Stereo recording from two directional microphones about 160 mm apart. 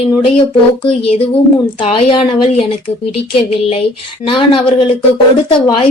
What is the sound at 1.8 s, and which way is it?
Speech, 35° left (ahead or behind).